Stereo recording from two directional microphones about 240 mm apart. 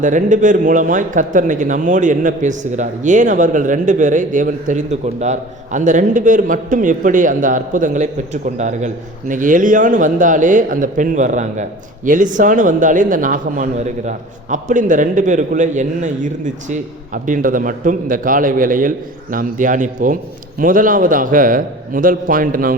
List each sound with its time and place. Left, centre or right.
0.0 s a man's voice: right